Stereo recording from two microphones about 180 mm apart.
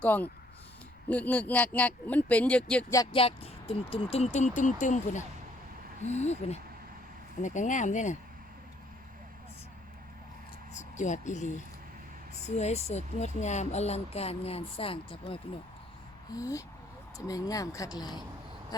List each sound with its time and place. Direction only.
0.0 s speech: 10° left (ahead or behind)
2.9 s speech: 25° left (ahead or behind); by 8.1 s 45° left (ahead or behind)
10.8 s speech: 40° left (ahead or behind)
16.3 s speech: 20° left (ahead or behind)